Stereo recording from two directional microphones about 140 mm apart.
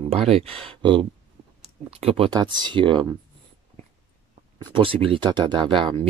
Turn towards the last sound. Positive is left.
turn(degrees=-35)  # may be behind; listen again after turning